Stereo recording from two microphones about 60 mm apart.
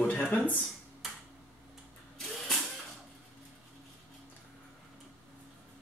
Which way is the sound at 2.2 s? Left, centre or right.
Centre.